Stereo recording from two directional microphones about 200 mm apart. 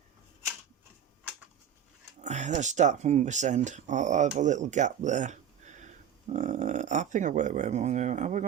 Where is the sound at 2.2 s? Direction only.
35° right (ahead or behind).